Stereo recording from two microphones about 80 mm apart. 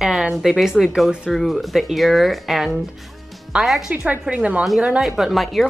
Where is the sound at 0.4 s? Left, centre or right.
Centre.